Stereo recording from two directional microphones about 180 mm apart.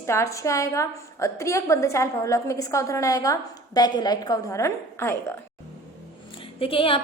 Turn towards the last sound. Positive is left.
turn(degrees=30)  # may be behind; listen again after turning